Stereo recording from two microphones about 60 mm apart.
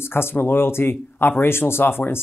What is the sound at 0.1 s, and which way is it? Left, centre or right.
Speech, left.